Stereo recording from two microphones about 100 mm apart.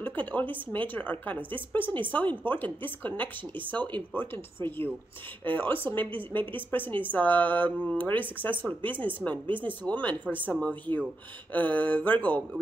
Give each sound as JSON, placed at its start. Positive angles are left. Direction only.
{"t": 0.0, "sound": "a woman's voice", "side_deg": 15}